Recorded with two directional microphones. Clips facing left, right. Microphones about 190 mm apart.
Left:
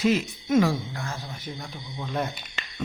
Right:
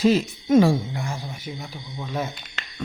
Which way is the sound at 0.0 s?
35° right (ahead or behind).